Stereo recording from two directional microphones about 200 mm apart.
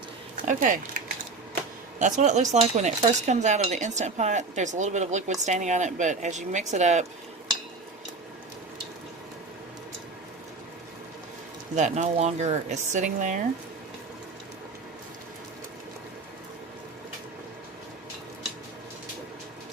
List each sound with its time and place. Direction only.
0.4 s speech: 40° right (ahead or behind)
2.0 s speech: 40° right (ahead or behind)
11.7 s speech: 35° right (ahead or behind)